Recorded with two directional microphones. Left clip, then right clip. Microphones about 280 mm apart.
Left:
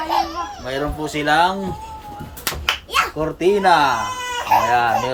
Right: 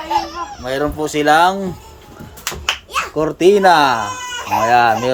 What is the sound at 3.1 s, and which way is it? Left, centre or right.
Speech, right.